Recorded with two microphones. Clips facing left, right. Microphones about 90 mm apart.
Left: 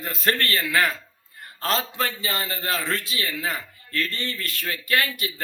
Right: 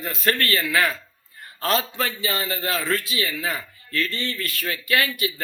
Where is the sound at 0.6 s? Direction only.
Centre (ahead or behind).